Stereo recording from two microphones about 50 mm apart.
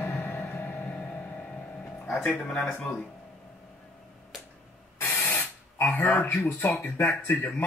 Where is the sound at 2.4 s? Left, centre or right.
Left.